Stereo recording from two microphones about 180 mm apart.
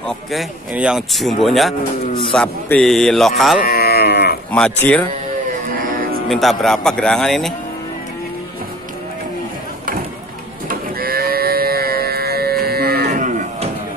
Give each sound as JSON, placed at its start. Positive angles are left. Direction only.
{"t": 0.0, "sound": "speech", "side_deg": 0}
{"t": 3.6, "sound": "livestock", "side_deg": 55}
{"t": 4.5, "sound": "speech", "side_deg": 5}
{"t": 6.2, "sound": "speech", "side_deg": 0}
{"t": 10.7, "sound": "livestock", "side_deg": -55}